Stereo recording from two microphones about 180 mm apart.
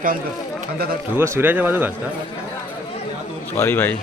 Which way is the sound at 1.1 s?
15° right (ahead or behind).